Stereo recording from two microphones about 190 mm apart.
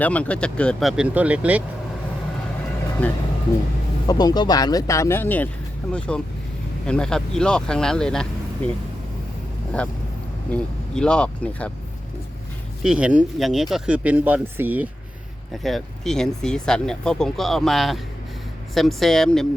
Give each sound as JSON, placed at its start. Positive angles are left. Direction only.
{"t": 0.0, "sound": "speech", "side_deg": 5}
{"t": 3.0, "sound": "speech", "side_deg": 10}
{"t": 4.0, "sound": "speech", "side_deg": 20}
{"t": 9.7, "sound": "speech", "side_deg": 5}
{"t": 12.8, "sound": "speech", "side_deg": -5}
{"t": 15.6, "sound": "speech", "side_deg": 0}